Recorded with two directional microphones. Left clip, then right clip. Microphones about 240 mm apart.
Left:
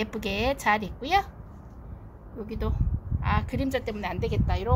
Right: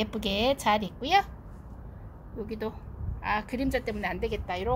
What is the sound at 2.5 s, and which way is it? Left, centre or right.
A woman's voice, centre.